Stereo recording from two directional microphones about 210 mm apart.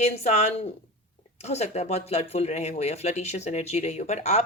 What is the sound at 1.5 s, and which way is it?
Speech, 30° left (ahead or behind).